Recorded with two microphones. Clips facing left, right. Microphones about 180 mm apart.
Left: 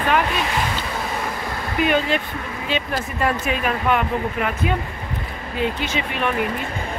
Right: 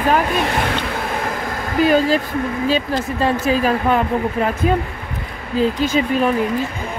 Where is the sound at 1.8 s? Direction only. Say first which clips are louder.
Right 5 dB; 35° right (ahead or behind).